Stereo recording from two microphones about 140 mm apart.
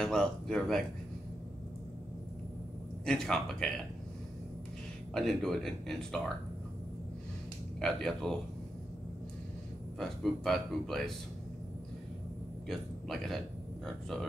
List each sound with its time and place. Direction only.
0.0 s speech: 5° left (ahead or behind)
3.1 s speech: 5° left (ahead or behind)
5.1 s speech: centre (ahead or behind)
7.8 s speech: 5° left (ahead or behind)
9.9 s speech: centre (ahead or behind)
12.6 s speech: centre (ahead or behind)